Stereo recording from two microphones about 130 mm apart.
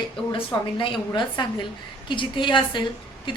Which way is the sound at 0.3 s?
40° left (ahead or behind).